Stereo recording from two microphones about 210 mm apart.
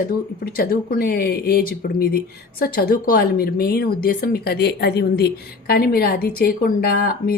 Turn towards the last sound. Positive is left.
turn(degrees=45)  # may be behind; listen again after turning